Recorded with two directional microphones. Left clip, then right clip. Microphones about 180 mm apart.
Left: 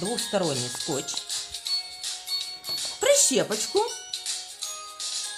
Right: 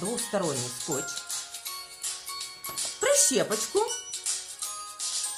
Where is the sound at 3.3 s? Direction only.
35° left (ahead or behind).